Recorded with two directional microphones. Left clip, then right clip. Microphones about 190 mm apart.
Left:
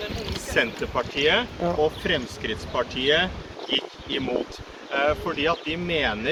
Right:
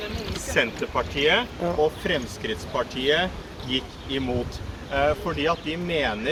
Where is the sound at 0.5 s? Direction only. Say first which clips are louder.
Even; 10° right (ahead or behind).